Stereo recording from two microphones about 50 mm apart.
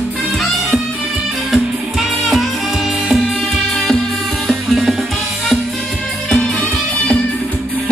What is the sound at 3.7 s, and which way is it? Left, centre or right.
Music, centre.